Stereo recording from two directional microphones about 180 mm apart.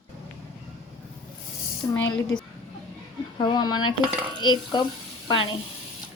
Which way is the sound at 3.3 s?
25° left (ahead or behind).